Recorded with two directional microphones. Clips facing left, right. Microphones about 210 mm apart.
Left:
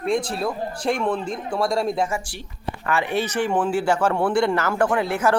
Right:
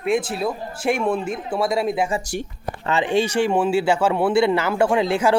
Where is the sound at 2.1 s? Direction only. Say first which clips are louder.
Right 3 dB; 35° right (ahead or behind).